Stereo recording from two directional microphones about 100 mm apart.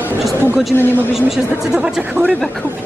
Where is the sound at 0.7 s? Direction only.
20° left (ahead or behind).